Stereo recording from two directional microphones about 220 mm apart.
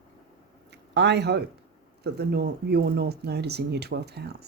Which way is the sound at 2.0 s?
45° right (ahead or behind).